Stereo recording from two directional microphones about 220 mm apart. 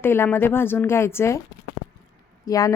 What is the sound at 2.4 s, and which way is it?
Speech, 15° left (ahead or behind).